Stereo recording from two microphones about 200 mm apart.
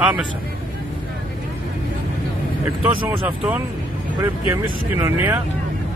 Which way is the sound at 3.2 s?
10° right (ahead or behind).